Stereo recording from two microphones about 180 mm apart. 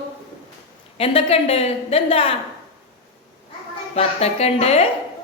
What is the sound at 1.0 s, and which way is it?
A woman's voice, 35° left (ahead or behind).